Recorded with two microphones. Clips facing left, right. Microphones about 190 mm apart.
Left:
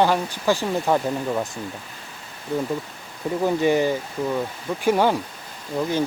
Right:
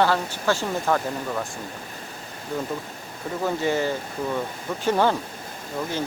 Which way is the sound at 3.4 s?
15° left (ahead or behind).